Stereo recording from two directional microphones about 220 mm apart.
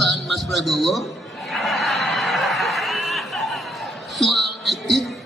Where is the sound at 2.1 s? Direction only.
Centre (ahead or behind).